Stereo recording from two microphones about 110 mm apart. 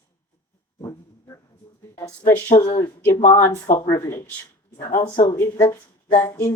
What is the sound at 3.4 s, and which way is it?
Speech, 25° left (ahead or behind).